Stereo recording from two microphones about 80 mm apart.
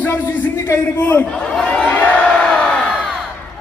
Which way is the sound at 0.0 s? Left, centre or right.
Left.